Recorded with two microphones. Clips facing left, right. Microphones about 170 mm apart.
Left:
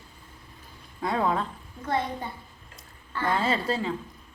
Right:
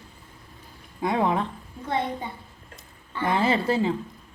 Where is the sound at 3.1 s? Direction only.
20° right (ahead or behind).